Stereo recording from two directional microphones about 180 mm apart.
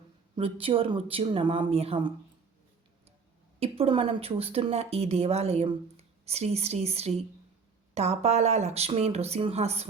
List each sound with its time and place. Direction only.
0.3 s a woman's voice: 30° right (ahead or behind)
3.6 s a woman's voice: 30° right (ahead or behind)